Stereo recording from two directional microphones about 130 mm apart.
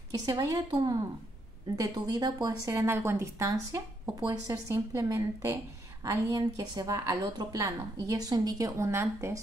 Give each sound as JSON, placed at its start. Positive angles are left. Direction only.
{"t": 0.1, "sound": "speech", "side_deg": -30}